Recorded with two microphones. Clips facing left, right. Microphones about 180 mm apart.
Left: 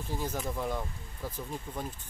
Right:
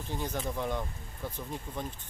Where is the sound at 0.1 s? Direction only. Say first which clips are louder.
Even; 5° left (ahead or behind).